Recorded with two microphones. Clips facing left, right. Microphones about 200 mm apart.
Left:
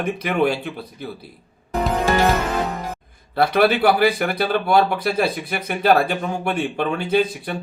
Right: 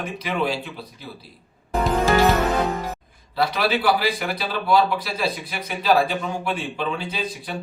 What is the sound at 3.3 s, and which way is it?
Speech, 55° left (ahead or behind).